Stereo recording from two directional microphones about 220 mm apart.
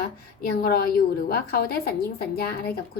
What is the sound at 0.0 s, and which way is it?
A woman's voice, 45° left (ahead or behind).